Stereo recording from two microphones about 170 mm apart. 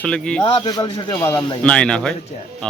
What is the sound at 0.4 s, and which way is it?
A man's voice, 30° left (ahead or behind).